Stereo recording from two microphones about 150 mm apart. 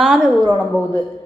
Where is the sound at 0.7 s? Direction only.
15° left (ahead or behind).